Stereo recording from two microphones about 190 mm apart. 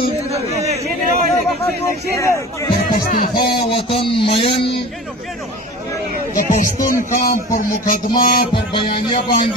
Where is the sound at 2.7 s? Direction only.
55° left (ahead or behind).